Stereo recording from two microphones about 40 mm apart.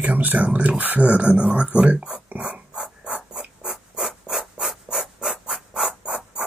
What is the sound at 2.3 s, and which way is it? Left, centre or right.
Dog, right.